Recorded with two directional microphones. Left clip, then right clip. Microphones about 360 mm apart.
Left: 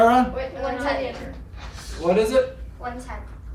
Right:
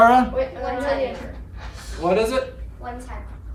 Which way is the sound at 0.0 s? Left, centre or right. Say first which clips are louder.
Right 3 dB; centre.